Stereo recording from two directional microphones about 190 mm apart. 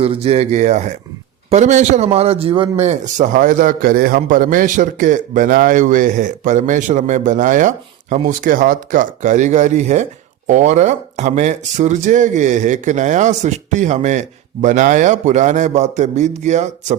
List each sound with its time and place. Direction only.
0.0 s speech: 30° right (ahead or behind)